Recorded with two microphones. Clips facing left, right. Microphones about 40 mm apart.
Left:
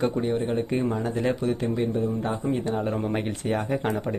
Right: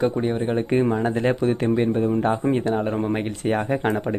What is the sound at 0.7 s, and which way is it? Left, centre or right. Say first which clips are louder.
Speech: right 5 dB; right.